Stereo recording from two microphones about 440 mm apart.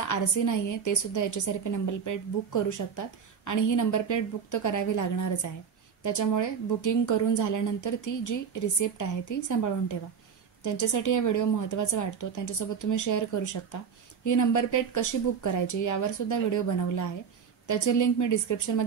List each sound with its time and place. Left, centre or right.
0.1 s a woman's voice: left